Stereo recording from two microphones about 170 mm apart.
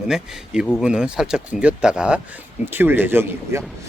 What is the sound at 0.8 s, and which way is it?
A man's voice, 5° right (ahead or behind).